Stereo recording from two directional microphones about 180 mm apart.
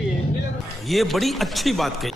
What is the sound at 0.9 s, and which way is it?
Speech, centre (ahead or behind).